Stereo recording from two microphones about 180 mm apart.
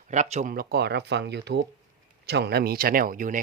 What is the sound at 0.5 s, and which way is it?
Speech, 60° right (ahead or behind).